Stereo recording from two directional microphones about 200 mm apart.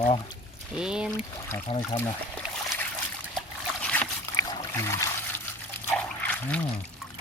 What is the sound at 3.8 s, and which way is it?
Boat, 5° left (ahead or behind).